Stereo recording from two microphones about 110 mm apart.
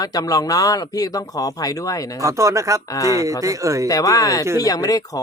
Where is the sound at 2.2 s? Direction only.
30° right (ahead or behind).